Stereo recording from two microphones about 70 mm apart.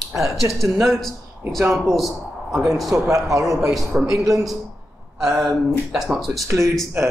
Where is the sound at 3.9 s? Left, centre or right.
Right.